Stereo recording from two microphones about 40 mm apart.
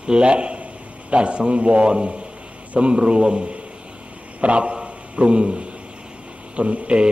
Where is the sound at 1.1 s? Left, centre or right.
Right.